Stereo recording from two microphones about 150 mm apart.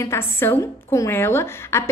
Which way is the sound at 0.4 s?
15° left (ahead or behind).